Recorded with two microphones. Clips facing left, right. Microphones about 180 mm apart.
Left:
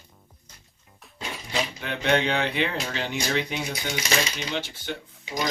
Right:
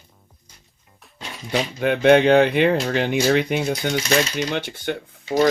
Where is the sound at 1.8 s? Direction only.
55° right (ahead or behind).